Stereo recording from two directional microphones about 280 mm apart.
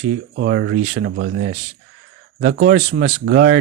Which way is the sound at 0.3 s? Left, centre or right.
Right.